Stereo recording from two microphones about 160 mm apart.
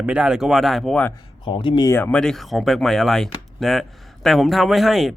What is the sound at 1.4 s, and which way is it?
Speech, 30° left (ahead or behind).